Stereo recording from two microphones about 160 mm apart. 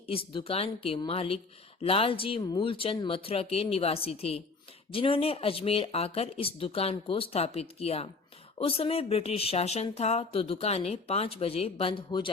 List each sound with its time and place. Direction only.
0.1 s speech: 35° left (ahead or behind)